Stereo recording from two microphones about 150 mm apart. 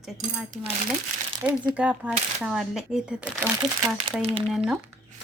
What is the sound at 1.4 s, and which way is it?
A woman's voice, 10° right (ahead or behind).